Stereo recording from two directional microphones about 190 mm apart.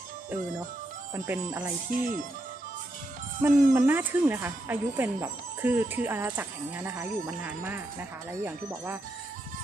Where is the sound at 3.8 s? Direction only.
10° right (ahead or behind).